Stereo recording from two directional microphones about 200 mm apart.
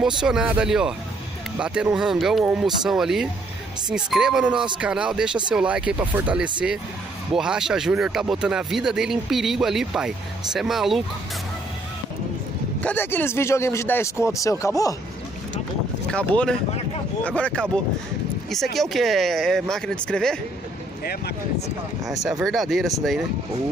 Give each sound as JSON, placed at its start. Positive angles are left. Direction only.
{"t": 0.0, "sound": "speech", "side_deg": -5}
{"t": 12.8, "sound": "speech", "side_deg": 10}
{"t": 16.1, "sound": "speech", "side_deg": 5}
{"t": 21.0, "sound": "speech", "side_deg": 50}
{"t": 22.4, "sound": "speech", "side_deg": 0}